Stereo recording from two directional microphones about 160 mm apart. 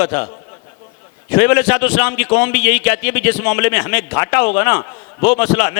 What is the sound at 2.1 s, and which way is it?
A man's voice, 30° left (ahead or behind).